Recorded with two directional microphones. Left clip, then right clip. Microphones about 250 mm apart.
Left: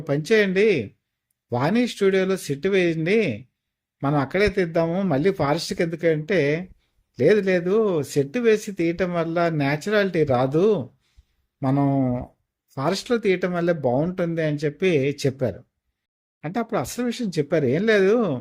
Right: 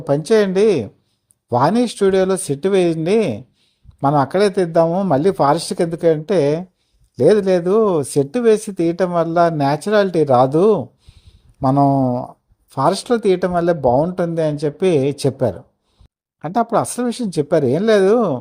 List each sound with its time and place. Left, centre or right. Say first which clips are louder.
0.0 s speech: right 5 dB; centre